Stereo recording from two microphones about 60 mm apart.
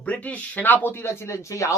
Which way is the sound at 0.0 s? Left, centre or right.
Left.